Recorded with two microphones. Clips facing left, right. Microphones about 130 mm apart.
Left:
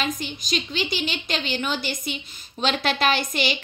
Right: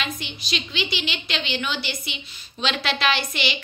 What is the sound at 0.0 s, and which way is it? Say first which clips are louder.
A woman's voice: left 4 dB; 45° left (ahead or behind).